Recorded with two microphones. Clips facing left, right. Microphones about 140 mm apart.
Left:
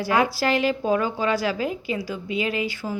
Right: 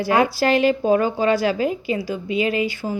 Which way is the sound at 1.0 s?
60° right (ahead or behind).